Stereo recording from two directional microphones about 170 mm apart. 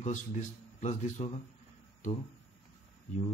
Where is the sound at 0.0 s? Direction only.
50° left (ahead or behind).